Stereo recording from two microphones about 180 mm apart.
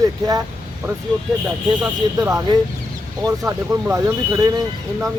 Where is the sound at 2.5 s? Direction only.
25° right (ahead or behind).